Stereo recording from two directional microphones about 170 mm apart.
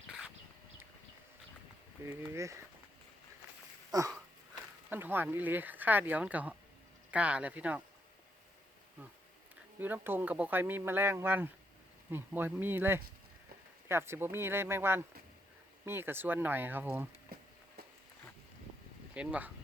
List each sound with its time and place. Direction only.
2.0 s speech: 15° right (ahead or behind)
3.9 s wheeze: 20° right (ahead or behind)
4.9 s speech: 10° right (ahead or behind)
9.7 s speech: 10° right (ahead or behind)
19.1 s speech: 5° right (ahead or behind)